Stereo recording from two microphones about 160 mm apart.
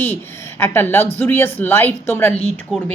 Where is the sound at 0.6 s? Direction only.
15° left (ahead or behind).